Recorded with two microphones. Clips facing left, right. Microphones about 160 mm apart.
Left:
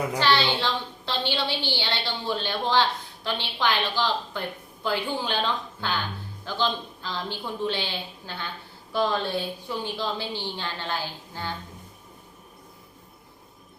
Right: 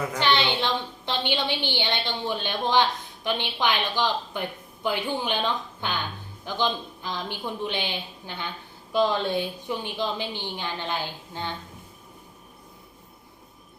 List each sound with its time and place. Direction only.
0.2 s a woman's voice: 20° right (ahead or behind)